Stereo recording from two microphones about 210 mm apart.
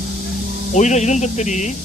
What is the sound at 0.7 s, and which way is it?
Speech, 35° left (ahead or behind).